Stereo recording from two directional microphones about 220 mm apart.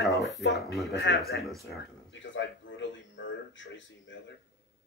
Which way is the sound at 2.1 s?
55° left (ahead or behind).